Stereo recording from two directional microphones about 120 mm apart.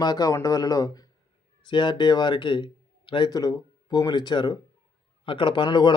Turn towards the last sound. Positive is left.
turn(degrees=40)  # may be behind; listen again after turning